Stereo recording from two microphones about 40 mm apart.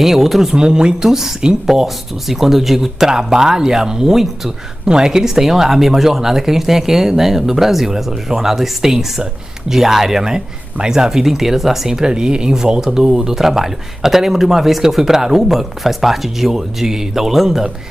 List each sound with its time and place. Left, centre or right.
0.0 s speech: centre
0.6 s speech: right
12.0 s speech: centre